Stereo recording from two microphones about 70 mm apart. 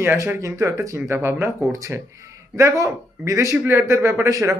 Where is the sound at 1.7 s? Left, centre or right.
Right.